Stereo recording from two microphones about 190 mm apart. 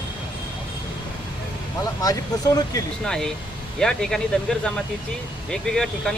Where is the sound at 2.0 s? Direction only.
20° left (ahead or behind).